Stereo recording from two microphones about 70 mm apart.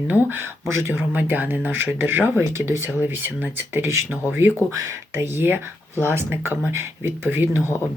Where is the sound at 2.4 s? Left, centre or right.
Right.